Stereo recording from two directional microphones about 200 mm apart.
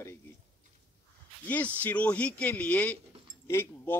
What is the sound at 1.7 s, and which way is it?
A man's voice, 5° left (ahead or behind).